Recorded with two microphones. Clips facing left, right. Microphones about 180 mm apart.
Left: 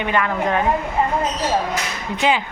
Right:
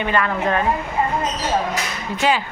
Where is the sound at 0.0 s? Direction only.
15° left (ahead or behind).